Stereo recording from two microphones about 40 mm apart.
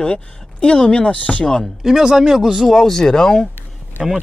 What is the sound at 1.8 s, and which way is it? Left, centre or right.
Speech, centre.